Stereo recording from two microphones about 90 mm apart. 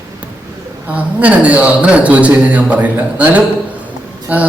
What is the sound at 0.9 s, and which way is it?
Speech, 15° right (ahead or behind).